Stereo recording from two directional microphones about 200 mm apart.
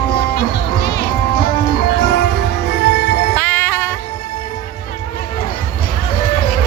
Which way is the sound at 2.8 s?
60° left (ahead or behind).